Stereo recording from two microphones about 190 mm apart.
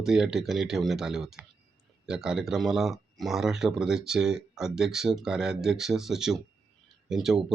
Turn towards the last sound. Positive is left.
turn(degrees=0)  # may be behind; listen again after turning